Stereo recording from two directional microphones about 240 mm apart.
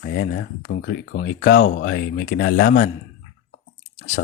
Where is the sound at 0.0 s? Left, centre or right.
Left.